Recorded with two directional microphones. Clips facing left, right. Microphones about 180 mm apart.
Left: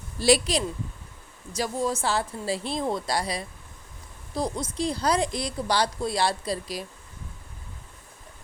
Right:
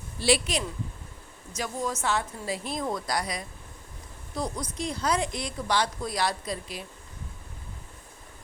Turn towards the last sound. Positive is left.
turn(degrees=35)  # may be behind; listen again after turning